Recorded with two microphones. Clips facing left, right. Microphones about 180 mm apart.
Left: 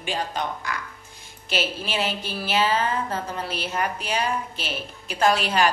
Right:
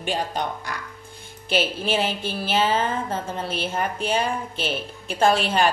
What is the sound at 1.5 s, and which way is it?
Speech, 55° right (ahead or behind).